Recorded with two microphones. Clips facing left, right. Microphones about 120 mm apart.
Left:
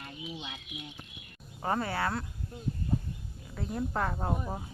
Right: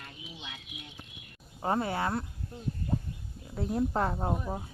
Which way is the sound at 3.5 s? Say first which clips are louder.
Right 4 dB; 30° right (ahead or behind).